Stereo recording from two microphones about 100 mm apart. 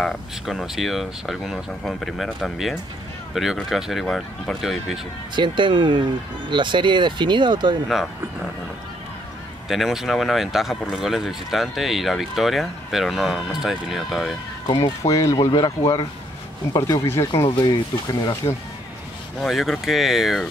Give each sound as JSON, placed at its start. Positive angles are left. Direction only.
{"t": 0.0, "sound": "speech", "side_deg": 0}
{"t": 5.3, "sound": "speech", "side_deg": -50}
{"t": 9.7, "sound": "speech", "side_deg": 0}
{"t": 15.0, "sound": "speech", "side_deg": 35}
{"t": 17.6, "sound": "speech", "side_deg": 45}
{"t": 19.4, "sound": "speech", "side_deg": 0}